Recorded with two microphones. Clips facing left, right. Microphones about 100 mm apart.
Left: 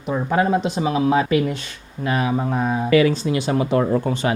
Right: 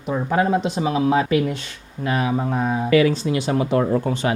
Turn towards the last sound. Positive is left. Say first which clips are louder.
# even
turn(degrees=20)  # may be behind; listen again after turning